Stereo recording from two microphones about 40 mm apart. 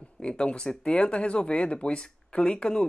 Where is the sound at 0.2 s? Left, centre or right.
Left.